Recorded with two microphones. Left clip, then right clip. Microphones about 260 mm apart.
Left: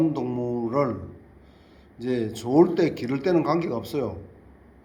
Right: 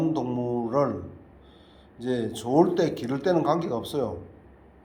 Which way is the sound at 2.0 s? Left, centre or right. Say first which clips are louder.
Left 1 dB; centre.